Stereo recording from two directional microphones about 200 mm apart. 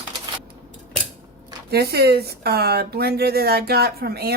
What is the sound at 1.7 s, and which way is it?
Speech, 50° right (ahead or behind).